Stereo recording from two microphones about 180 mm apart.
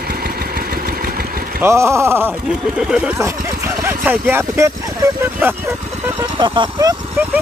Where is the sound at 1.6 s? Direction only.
15° right (ahead or behind).